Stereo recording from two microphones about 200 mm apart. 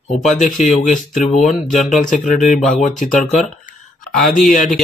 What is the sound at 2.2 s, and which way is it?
Speech, 40° left (ahead or behind).